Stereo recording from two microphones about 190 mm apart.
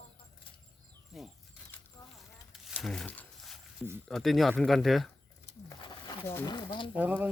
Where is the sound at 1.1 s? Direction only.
Centre (ahead or behind).